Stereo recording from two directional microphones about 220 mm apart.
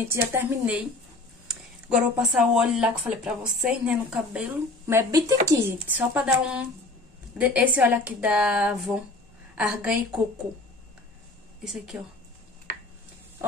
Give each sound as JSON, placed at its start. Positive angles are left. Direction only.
{"t": 0.1, "sound": "a woman's voice", "side_deg": -10}
{"t": 1.5, "sound": "a sound", "side_deg": -5}
{"t": 2.5, "sound": "speech", "side_deg": -5}
{"t": 11.6, "sound": "speech", "side_deg": 0}